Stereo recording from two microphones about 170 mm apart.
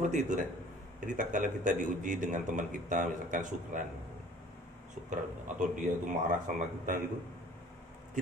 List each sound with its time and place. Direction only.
0.0 s a man's voice: 45° right (ahead or behind)
5.6 s a man's voice: 50° right (ahead or behind)